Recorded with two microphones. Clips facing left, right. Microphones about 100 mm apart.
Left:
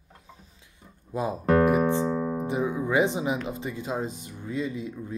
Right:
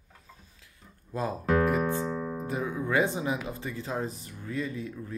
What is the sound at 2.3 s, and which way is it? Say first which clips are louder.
Music: left 5 dB; 20° left (ahead or behind).